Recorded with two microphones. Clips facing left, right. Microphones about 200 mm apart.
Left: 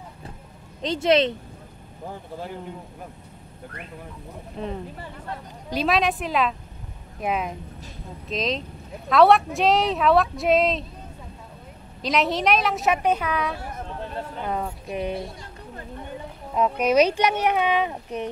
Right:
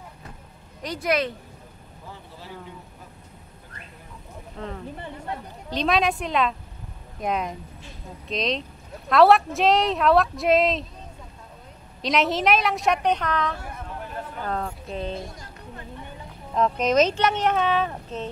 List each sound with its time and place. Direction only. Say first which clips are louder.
0.8 s speech: left 5 dB; 25° left (ahead or behind)
2.0 s speech: left 8 dB; 55° left (ahead or behind)
4.6 s speech: left 4 dB; 20° left (ahead or behind)
5.7 s speech: even; 5° left (ahead or behind)
12.0 s speech: even; centre (ahead or behind)
16.5 s speech: left 1 dB; 10° left (ahead or behind)